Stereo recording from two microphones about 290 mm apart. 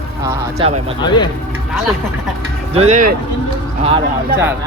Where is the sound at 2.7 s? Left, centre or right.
Right.